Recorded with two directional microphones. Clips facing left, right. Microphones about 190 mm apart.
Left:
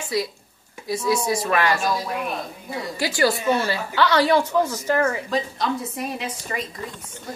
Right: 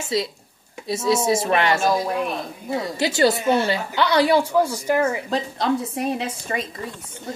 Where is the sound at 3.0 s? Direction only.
20° right (ahead or behind).